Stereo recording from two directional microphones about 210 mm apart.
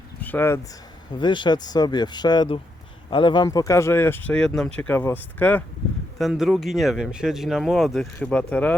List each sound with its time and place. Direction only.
0.2 s speech: 10° left (ahead or behind)
1.2 s speech: 20° left (ahead or behind); by 8.7 s 5° left (ahead or behind)